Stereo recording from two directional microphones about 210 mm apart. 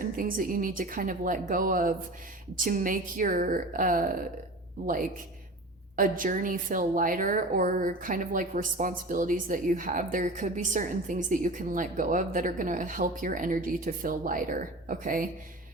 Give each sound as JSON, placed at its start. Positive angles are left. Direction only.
{"t": 0.0, "sound": "a woman's voice", "side_deg": -40}
{"t": 6.0, "sound": "a woman's voice", "side_deg": -40}